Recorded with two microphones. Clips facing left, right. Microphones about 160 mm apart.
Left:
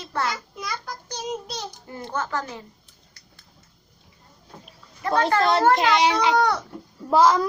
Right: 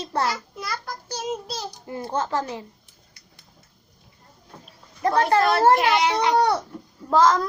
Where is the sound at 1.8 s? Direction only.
30° right (ahead or behind).